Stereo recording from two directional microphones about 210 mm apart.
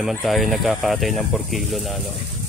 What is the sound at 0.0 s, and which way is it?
Speech, centre (ahead or behind).